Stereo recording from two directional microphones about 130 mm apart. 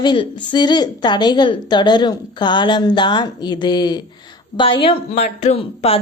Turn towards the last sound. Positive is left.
turn(degrees=50)  # may be behind; listen again after turning